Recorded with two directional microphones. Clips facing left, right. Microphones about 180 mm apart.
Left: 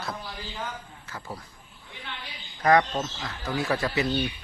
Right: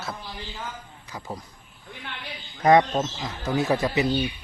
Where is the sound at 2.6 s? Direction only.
20° right (ahead or behind).